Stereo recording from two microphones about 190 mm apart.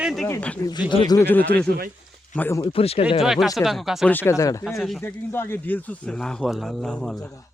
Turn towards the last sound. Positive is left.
turn(degrees=5)  # may be behind; listen again after turning